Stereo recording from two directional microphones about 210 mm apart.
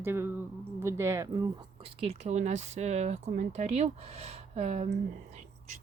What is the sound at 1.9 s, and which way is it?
Speech, 30° right (ahead or behind).